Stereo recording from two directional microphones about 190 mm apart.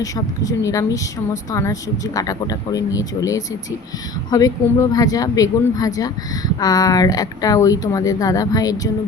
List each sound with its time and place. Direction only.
0.0 s a woman's voice: 15° left (ahead or behind)